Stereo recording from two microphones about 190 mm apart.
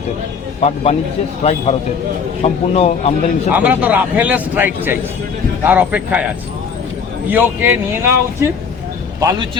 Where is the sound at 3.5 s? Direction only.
10° right (ahead or behind).